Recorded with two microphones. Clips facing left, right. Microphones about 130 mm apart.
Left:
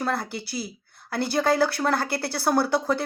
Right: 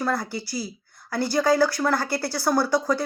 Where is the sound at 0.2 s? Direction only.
65° left (ahead or behind).